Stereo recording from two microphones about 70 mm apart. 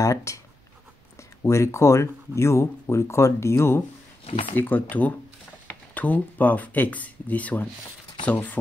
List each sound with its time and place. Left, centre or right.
0.0 s speech: left
1.4 s speech: left
4.6 s speech: left